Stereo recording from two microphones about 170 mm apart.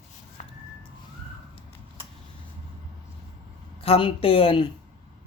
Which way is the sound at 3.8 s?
35° left (ahead or behind).